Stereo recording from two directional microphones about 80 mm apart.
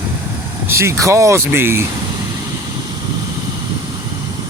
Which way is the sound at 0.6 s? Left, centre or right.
Right.